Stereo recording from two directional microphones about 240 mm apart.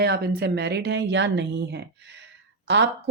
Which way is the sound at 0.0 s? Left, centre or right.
Right.